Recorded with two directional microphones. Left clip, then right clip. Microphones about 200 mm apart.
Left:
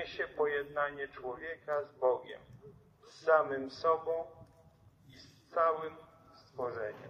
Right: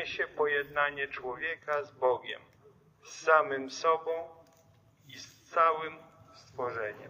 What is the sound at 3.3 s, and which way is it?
Speech, 15° right (ahead or behind).